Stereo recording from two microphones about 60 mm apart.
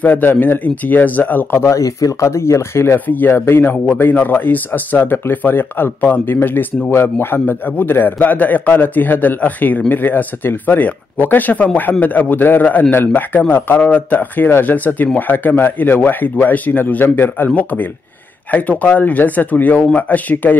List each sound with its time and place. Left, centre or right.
0.0 s a man's voice: left
1.6 s speech: left
3.1 s a man's voice: left
18.5 s speech: left